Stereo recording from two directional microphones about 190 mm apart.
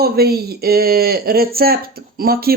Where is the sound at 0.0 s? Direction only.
55° right (ahead or behind).